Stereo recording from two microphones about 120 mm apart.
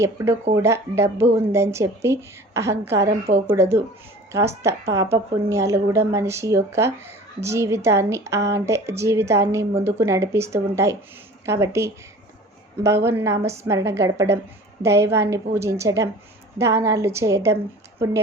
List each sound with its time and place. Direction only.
0.0 s a woman's voice: 25° right (ahead or behind)